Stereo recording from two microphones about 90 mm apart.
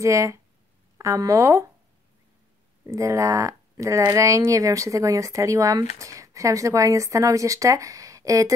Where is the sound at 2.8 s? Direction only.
35° right (ahead or behind).